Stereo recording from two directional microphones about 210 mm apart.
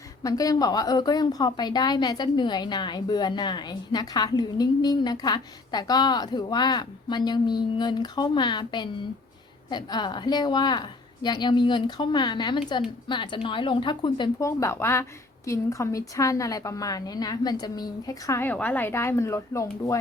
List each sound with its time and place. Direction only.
0.2 s a woman's voice: 15° left (ahead or behind)